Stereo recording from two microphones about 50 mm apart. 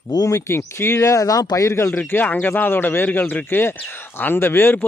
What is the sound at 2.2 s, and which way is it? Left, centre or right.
Speech, left.